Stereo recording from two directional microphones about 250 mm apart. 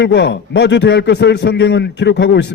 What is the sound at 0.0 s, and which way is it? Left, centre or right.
A man's voice, left.